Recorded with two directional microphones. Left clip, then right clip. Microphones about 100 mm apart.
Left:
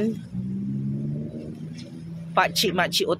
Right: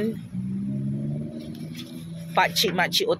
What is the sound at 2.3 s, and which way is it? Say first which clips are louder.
Speech: even; 45° left (ahead or behind).